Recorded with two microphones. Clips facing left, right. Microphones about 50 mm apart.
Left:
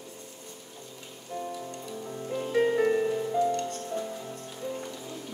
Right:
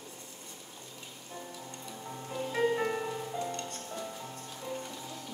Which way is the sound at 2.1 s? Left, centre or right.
Centre.